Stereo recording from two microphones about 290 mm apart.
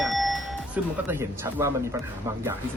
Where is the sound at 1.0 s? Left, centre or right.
Centre.